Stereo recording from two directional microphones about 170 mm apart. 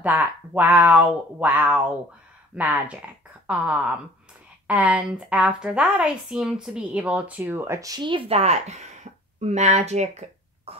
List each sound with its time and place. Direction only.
0.0 s a woman's voice: 10° right (ahead or behind); by 10.7 s 40° right (ahead or behind)